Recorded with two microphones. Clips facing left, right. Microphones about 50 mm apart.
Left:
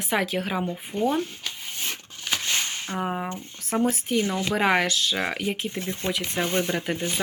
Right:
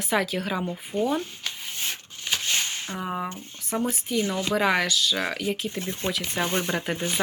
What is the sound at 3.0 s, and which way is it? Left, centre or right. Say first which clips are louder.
Speech: left 2 dB; left.